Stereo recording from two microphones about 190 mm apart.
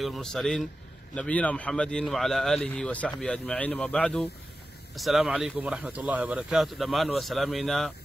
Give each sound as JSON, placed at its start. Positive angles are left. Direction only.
{"t": 0.0, "sound": "speech", "side_deg": 0}